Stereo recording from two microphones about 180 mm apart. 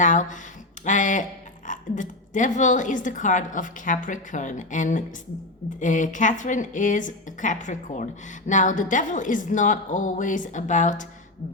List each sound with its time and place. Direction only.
0.0 s speech: 45° left (ahead or behind)